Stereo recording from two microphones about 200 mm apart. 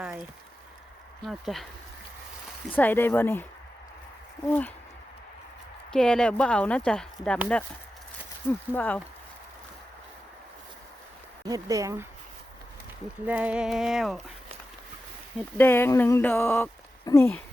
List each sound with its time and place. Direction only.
0.0 s a sound: 5° right (ahead or behind)
1.2 s speech: centre (ahead or behind)
2.7 s speech: 10° left (ahead or behind)
4.4 s speech: 5° left (ahead or behind)
5.9 s speech: 5° left (ahead or behind)
8.7 s speech: 10° left (ahead or behind)
11.4 s speech: 15° right (ahead or behind)
13.2 s speech: 5° right (ahead or behind)
15.5 s speech: 10° left (ahead or behind)